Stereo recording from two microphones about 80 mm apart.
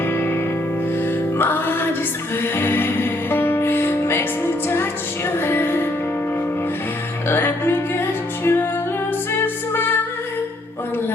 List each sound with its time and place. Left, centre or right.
0.0 s music: left
1.4 s music: left
7.3 s music: left